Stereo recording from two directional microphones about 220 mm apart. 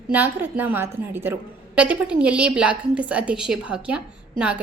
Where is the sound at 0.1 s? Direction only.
10° right (ahead or behind).